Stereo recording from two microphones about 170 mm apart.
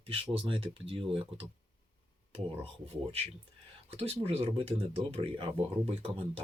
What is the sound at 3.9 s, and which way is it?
Speech, 35° right (ahead or behind).